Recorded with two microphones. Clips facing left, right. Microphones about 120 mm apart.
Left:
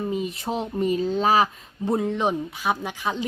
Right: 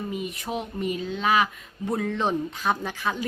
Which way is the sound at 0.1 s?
30° left (ahead or behind).